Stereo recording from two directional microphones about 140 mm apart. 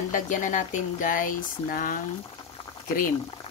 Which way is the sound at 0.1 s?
65° left (ahead or behind).